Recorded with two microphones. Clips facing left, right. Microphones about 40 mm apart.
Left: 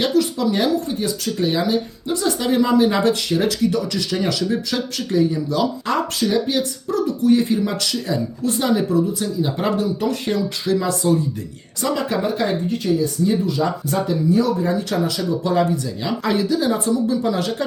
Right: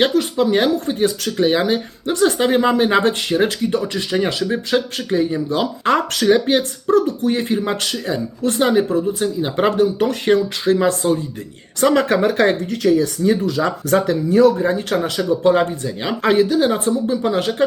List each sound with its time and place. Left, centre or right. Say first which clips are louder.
0.0 s speech: right 2 dB; right
11.8 s speech: right 6 dB; right
14.3 s speech: right 6 dB; right